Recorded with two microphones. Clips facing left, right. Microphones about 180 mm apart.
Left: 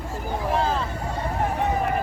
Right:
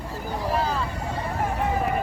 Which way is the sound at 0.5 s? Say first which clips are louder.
Left 2 dB; 25° left (ahead or behind).